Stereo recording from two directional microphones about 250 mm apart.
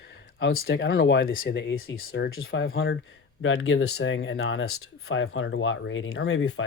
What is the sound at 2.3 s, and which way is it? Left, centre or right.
Speech, left.